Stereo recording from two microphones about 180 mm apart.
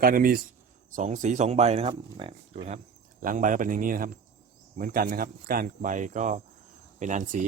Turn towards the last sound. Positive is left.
turn(degrees=-45)  # may be behind; listen again after turning